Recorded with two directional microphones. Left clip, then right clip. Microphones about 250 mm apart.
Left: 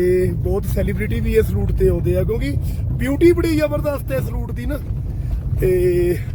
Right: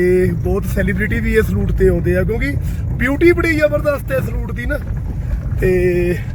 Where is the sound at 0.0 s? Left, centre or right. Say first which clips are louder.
Right 3 dB; centre.